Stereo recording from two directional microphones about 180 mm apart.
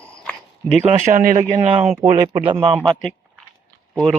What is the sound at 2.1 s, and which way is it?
Speech, 30° right (ahead or behind).